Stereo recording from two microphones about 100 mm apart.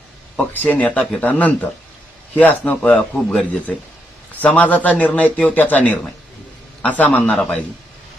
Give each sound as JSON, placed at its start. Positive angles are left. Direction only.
{"t": 0.3, "sound": "speech", "side_deg": 15}